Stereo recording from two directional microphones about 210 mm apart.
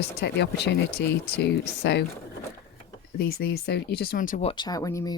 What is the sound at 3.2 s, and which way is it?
Speech, 45° left (ahead or behind).